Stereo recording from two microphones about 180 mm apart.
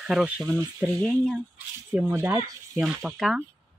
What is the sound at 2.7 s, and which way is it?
Speech, 5° right (ahead or behind).